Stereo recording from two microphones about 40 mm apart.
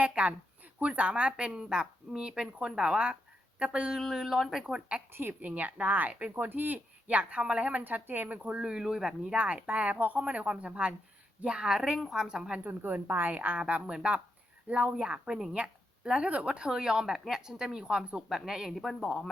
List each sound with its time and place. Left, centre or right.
0.2 s speech: right
4.1 s a woman's voice: centre
4.7 s speech: right
5.4 s speech: right
7.1 s speech: right
7.7 s speech: right
8.4 s speech: right
9.3 s speech: right
11.4 s a woman's voice: right
12.6 s a woman's voice: right
13.3 s speech: right
13.6 s speech: right
16.6 s a woman's voice: centre
18.8 s speech: centre